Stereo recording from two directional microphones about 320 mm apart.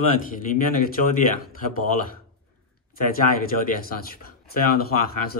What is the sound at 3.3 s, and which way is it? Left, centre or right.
Speech, left.